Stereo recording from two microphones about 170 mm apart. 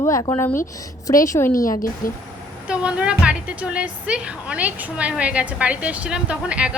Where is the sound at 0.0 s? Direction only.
20° left (ahead or behind).